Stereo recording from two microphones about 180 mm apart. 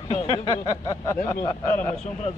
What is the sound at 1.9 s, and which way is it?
Speech, 40° left (ahead or behind).